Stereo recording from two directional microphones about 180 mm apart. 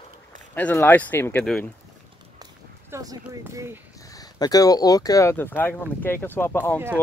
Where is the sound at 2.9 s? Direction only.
15° right (ahead or behind).